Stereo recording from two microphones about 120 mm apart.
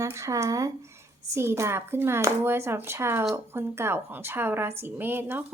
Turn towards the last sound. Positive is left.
turn(degrees=-15)  # may be behind; listen again after turning